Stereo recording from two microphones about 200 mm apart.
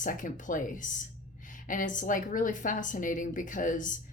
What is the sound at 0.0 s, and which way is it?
A woman's voice, 40° left (ahead or behind).